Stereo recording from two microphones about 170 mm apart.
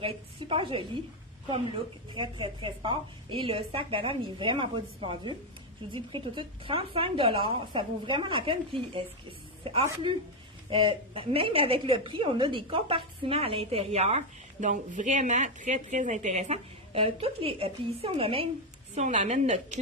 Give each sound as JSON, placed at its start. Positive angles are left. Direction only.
{"t": 0.0, "sound": "a woman's voice", "side_deg": -30}
{"t": 10.7, "sound": "a woman's voice", "side_deg": -30}